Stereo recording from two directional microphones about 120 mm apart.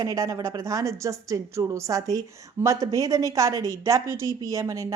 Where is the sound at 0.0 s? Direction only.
25° right (ahead or behind).